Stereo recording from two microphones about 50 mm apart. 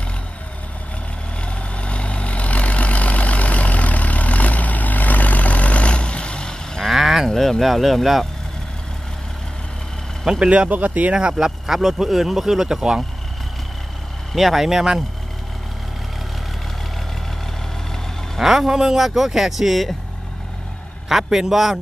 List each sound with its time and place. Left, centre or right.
1.4 s vehicle: left
6.8 s cattle: centre
7.2 s speech: centre
10.4 s speech: right
11.3 s speech: centre
14.3 s speech: centre
18.3 s speech: centre
21.1 s a man's voice: centre